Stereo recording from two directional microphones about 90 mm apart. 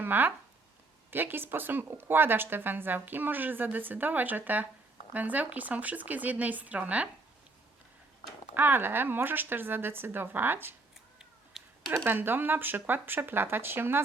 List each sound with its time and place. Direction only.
0.0 s a woman's voice: 20° right (ahead or behind)
8.5 s a woman's voice: 25° right (ahead or behind)
11.6 s a sound: 5° right (ahead or behind)
12.0 s a woman's voice: 25° right (ahead or behind)